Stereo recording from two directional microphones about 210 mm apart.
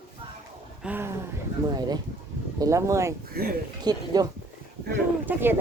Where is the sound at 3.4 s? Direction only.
45° right (ahead or behind).